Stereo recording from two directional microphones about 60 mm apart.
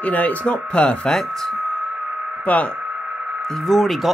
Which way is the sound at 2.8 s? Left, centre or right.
Centre.